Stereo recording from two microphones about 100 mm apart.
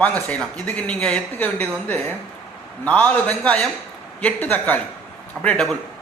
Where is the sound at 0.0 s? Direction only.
15° left (ahead or behind).